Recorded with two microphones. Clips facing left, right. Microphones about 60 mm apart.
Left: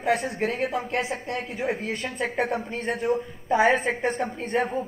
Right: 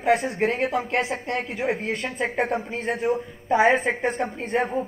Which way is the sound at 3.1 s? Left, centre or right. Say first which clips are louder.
Even; centre.